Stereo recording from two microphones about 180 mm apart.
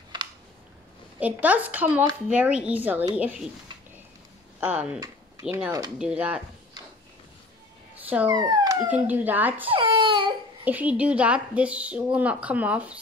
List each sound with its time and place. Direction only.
1.2 s a woman's voice: 10° right (ahead or behind)
4.6 s speech: 5° right (ahead or behind)
5.5 s a woman's voice: 15° right (ahead or behind)
5.9 s a woman's voice: 5° right (ahead or behind)
8.0 s dog: 10° right (ahead or behind)
8.3 s speech: 20° right (ahead or behind)
8.8 s a woman's voice: 10° right (ahead or behind)
9.7 s baby cry: 30° right (ahead or behind)
10.6 s a woman's voice: 10° right (ahead or behind)